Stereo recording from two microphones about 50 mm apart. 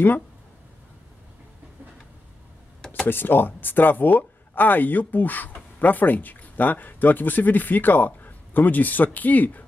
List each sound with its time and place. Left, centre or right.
3.1 s speech: left